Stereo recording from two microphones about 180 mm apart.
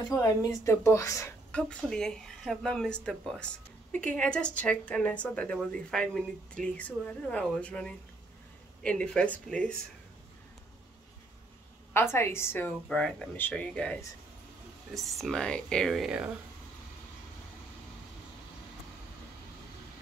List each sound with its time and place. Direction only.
0.1 s speech: 20° left (ahead or behind)
1.5 s speech: 5° left (ahead or behind)
11.9 s speech: 15° left (ahead or behind)
15.0 s speech: centre (ahead or behind)